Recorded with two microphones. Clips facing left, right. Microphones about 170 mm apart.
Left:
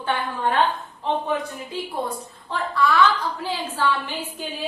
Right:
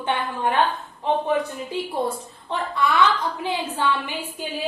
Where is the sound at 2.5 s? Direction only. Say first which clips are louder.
Left 1 dB; 20° right (ahead or behind).